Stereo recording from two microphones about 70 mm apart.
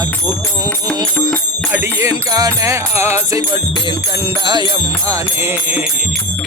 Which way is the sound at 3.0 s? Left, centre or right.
Right.